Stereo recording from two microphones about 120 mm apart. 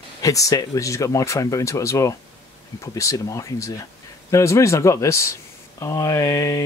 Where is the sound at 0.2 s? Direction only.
30° left (ahead or behind).